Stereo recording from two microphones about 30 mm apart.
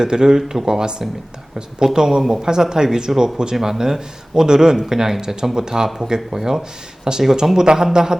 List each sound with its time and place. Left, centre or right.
0.0 s speech: centre